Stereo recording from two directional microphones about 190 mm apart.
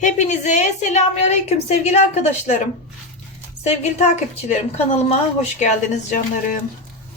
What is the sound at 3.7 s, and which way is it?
A woman's voice, 35° left (ahead or behind).